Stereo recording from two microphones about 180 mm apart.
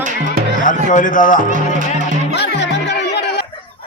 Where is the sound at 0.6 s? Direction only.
45° left (ahead or behind).